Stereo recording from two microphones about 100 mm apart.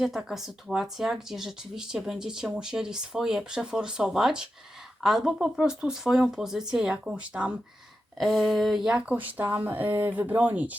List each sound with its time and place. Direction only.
0.0 s speech: 5° right (ahead or behind)
8.2 s speech: centre (ahead or behind); by 10.8 s 15° right (ahead or behind)